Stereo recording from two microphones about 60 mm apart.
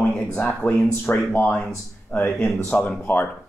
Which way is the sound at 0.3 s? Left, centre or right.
Left.